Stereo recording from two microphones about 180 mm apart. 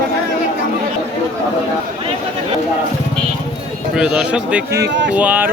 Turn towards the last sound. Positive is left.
turn(degrees=-10)  # may be behind; listen again after turning